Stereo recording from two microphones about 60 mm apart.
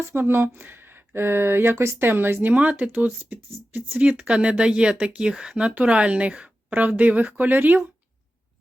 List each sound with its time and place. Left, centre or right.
0.1 s speech: right
2.5 s speech: right